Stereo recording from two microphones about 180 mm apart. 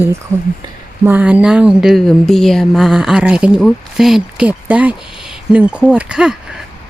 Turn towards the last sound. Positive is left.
turn(degrees=-5)  # may be behind; listen again after turning